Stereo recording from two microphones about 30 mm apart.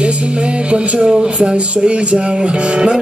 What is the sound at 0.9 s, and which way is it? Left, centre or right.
Speech, right.